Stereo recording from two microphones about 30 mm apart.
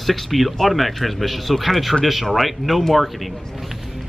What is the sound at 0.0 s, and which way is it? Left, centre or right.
Speech, centre.